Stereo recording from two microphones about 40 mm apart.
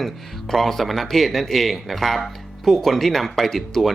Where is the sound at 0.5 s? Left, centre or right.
Centre.